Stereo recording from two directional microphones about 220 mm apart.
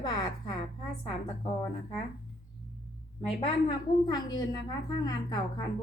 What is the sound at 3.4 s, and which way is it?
A woman's voice, 20° left (ahead or behind).